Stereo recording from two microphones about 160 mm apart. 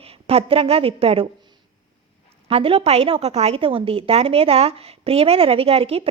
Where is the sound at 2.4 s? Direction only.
35° right (ahead or behind).